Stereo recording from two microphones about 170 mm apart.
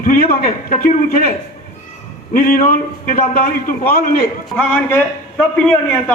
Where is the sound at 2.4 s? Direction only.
55° left (ahead or behind).